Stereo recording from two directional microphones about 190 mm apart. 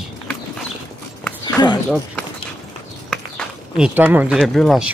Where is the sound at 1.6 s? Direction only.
20° left (ahead or behind).